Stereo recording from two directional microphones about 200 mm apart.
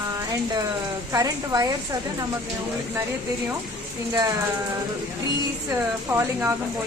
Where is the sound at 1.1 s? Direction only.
15° right (ahead or behind).